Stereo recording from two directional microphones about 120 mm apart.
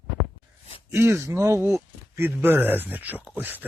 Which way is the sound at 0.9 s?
20° right (ahead or behind).